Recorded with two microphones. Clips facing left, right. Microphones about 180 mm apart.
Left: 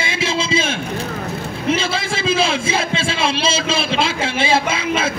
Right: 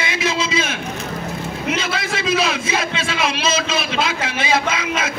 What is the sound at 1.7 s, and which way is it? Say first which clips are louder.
A man's voice: left 4 dB; 30° left (ahead or behind).